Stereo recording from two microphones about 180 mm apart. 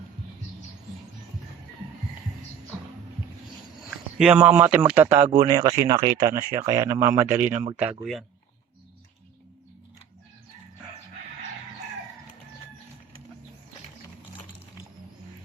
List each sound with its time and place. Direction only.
3.8 s speech: 5° right (ahead or behind)
7.5 s speech: 30° right (ahead or behind)